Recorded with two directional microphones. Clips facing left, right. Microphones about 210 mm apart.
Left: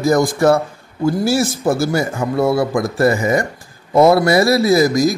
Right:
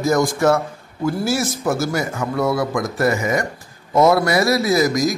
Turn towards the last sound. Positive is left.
turn(degrees=30)  # may be behind; listen again after turning